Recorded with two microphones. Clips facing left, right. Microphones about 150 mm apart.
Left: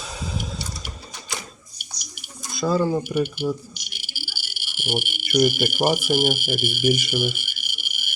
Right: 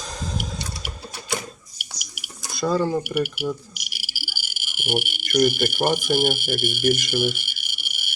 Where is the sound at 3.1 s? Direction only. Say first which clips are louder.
Left 1 dB; 5° right (ahead or behind).